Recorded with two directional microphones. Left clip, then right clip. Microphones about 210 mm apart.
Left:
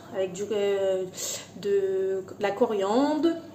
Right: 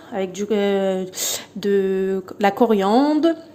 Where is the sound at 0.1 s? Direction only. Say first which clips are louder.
Right 6 dB; 45° right (ahead or behind).